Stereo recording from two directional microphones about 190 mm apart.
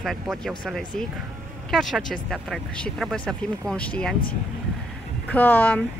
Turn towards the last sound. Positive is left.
turn(degrees=10)  # may be behind; listen again after turning